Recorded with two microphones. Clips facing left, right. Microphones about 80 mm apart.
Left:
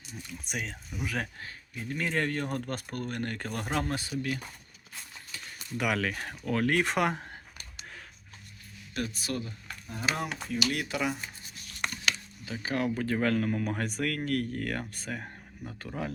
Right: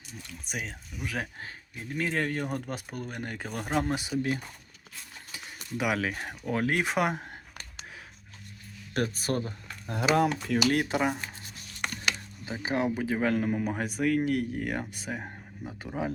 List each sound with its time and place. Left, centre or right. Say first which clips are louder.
0.4 s speech: even; centre
3.8 s speech: right 3 dB; centre
4.1 s speech: right 6 dB; right
5.3 s a sound: right 1 dB; centre
5.7 s speech: right 1 dB; centre
8.9 s speech: right 5 dB; right
9.9 s speech: right 8 dB; right
10.7 s speech: right 5 dB; right
12.5 s speech: right 2 dB; right
12.9 s speech: right 1 dB; centre